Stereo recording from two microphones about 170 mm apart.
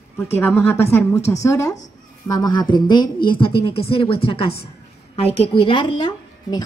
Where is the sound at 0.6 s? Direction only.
15° left (ahead or behind).